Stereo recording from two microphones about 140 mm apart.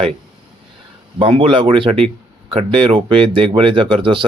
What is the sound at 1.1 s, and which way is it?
Speech, 40° right (ahead or behind).